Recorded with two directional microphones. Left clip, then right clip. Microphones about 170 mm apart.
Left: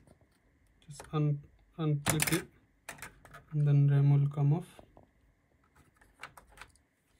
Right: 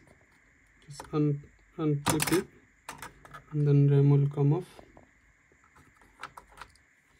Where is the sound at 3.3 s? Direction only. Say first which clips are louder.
Right 6 dB; 5° right (ahead or behind).